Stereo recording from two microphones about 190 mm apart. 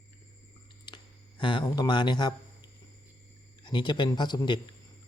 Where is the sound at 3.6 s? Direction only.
25° left (ahead or behind).